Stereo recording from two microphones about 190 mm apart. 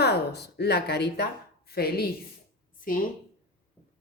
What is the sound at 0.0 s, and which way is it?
A woman's voice, 60° left (ahead or behind).